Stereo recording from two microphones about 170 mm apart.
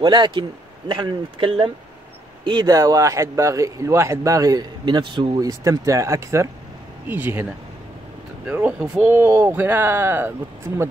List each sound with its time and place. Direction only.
0.0 s speech: 25° right (ahead or behind)
8.5 s speech: 10° right (ahead or behind)